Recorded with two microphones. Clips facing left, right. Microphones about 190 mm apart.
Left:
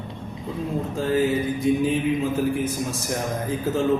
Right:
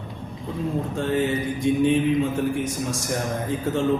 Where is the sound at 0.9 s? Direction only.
Centre (ahead or behind).